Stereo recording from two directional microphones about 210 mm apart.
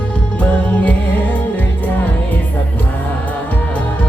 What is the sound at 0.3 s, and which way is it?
Music, 5° left (ahead or behind).